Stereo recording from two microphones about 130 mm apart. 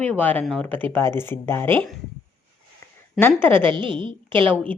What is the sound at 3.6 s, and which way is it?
Speech, 40° right (ahead or behind).